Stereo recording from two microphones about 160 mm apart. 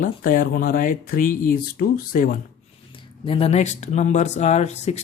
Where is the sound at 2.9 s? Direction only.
35° left (ahead or behind).